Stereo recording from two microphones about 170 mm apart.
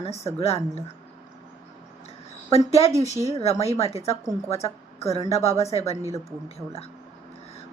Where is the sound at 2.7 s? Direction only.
40° left (ahead or behind).